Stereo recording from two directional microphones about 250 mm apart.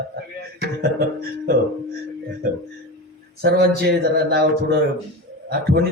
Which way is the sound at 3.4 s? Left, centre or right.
Right.